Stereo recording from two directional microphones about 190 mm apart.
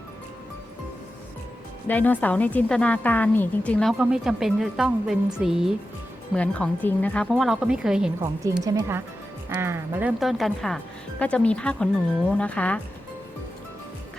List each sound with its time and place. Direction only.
1.9 s a woman's voice: 10° left (ahead or behind)
8.6 s a woman's voice: 15° right (ahead or behind); by 12.8 s 5° left (ahead or behind)